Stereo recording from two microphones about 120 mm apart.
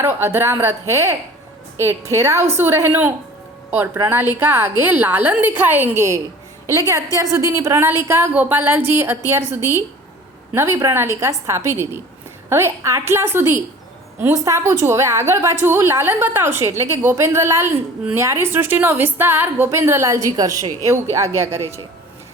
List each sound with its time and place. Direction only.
0.0 s a woman's voice: 20° right (ahead or behind)